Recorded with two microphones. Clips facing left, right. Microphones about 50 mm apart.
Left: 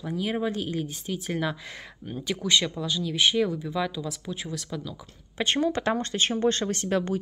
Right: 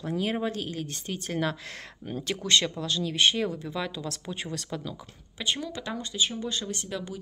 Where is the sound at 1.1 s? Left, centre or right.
Centre.